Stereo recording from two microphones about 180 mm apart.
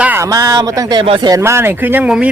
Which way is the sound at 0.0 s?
15° right (ahead or behind).